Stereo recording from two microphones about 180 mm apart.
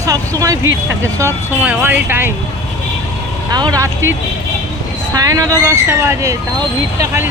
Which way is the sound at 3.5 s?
20° right (ahead or behind).